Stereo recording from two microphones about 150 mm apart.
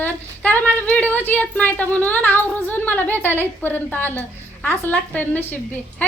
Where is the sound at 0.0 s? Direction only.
10° left (ahead or behind).